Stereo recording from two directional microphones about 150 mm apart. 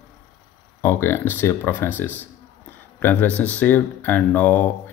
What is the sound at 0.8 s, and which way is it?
A man's voice, 15° left (ahead or behind).